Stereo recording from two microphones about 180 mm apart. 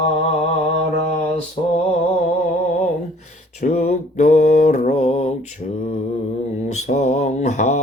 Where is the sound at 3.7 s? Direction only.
35° left (ahead or behind).